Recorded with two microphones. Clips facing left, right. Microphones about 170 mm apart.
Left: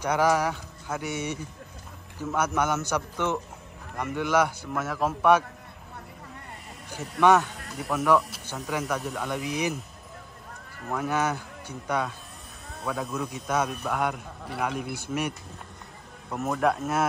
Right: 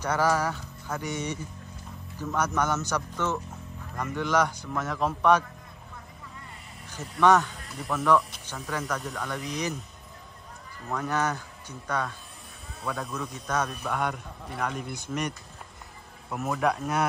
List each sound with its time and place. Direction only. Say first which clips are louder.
0.0 s a man's voice: left 2 dB; 10° left (ahead or behind)
6.9 s speech: left 1 dB; 10° left (ahead or behind)
10.9 s a man's voice: left 1 dB; 5° left (ahead or behind)